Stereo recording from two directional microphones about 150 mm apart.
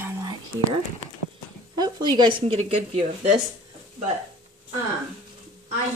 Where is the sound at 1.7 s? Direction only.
30° right (ahead or behind).